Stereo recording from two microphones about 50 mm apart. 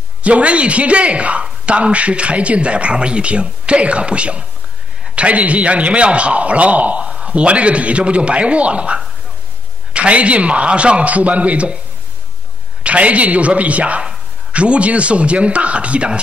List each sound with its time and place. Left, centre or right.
0.2 s a man's voice: right
12.8 s a man's voice: right